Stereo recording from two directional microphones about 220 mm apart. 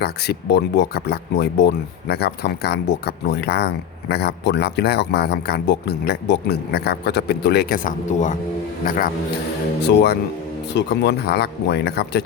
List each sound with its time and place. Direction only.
0.0 s speech: 50° left (ahead or behind)
9.8 s speech: 50° left (ahead or behind)